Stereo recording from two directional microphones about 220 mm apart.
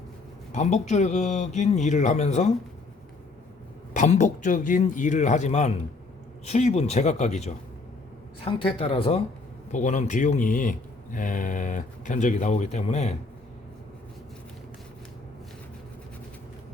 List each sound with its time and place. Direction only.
0.5 s speech: 30° left (ahead or behind)
3.9 s speech: 35° left (ahead or behind)